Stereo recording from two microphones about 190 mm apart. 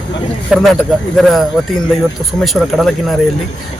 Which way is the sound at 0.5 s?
Centre (ahead or behind).